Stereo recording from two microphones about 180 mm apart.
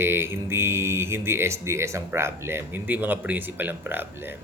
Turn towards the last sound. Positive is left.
turn(degrees=-10)  # may be behind; listen again after turning